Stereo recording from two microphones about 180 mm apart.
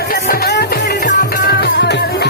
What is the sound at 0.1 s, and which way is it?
Music, 60° left (ahead or behind).